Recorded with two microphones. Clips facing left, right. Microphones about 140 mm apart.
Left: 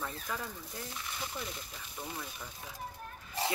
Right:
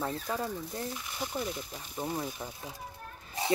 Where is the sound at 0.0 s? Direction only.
35° right (ahead or behind).